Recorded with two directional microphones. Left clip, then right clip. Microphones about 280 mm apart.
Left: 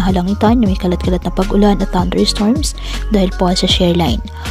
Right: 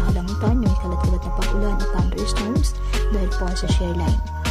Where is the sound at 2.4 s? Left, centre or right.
Left.